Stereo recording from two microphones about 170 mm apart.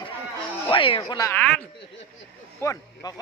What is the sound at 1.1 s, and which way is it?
Speech, 15° left (ahead or behind).